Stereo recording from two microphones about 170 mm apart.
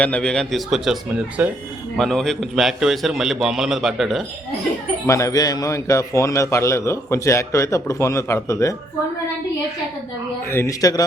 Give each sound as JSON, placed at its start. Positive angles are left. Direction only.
{"t": 0.0, "sound": "a man's voice", "side_deg": 5}
{"t": 5.0, "sound": "a man's voice", "side_deg": 20}
{"t": 10.5, "sound": "speech", "side_deg": 15}